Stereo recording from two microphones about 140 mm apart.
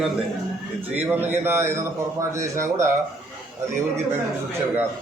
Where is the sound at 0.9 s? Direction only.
15° right (ahead or behind).